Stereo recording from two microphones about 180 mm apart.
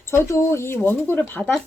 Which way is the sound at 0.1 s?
15° left (ahead or behind).